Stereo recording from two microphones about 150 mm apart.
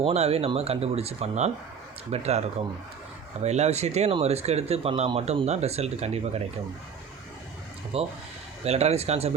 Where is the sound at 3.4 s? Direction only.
50° right (ahead or behind).